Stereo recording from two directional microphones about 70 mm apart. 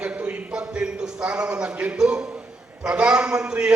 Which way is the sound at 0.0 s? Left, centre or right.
Centre.